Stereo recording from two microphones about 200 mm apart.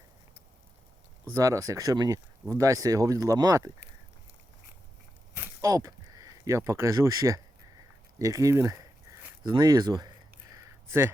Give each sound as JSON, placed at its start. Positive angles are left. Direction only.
{"t": 1.3, "sound": "speech", "side_deg": -15}
{"t": 5.6, "sound": "speech", "side_deg": -15}